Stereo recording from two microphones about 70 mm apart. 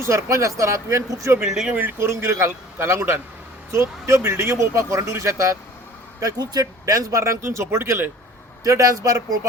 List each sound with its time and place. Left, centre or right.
0.0 s speech: right
1.5 s speech: centre
1.7 s speech: right
6.1 s speech: right
8.6 s speech: right